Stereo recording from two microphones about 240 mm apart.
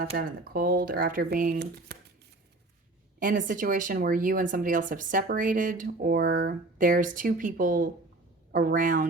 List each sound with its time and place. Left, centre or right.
0.2 s speech: right
3.2 s speech: right